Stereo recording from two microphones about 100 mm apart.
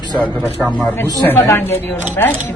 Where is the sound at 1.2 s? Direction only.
20° left (ahead or behind).